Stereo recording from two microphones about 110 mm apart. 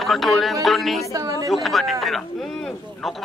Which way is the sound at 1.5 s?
Centre (ahead or behind).